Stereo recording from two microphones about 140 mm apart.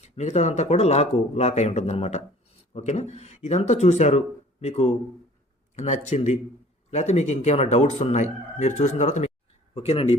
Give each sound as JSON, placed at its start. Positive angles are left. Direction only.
{"t": 0.0, "sound": "speech", "side_deg": 55}